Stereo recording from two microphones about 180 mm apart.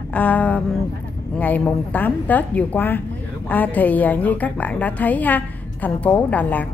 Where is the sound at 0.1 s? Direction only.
10° left (ahead or behind).